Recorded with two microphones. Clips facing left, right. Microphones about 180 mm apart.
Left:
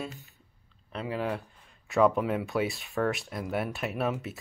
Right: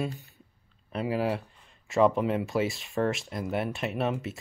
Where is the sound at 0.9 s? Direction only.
10° right (ahead or behind).